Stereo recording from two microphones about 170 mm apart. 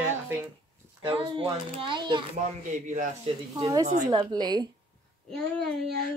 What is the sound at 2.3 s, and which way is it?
Speech, 45° right (ahead or behind).